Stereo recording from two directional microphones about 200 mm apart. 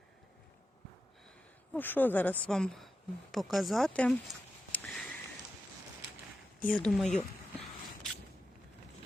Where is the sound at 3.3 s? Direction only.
Centre (ahead or behind).